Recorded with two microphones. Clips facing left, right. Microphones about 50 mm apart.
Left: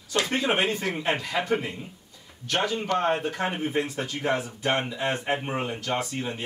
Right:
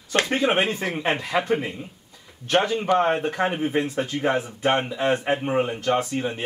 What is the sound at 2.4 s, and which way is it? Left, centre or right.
Speech, right.